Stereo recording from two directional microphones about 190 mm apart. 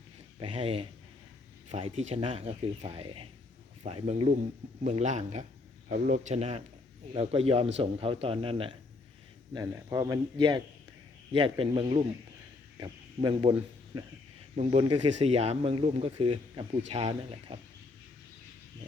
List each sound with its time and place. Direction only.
0.3 s a man's voice: 30° right (ahead or behind)